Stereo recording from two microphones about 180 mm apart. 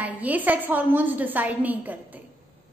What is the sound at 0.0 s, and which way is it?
A woman's voice, 10° right (ahead or behind).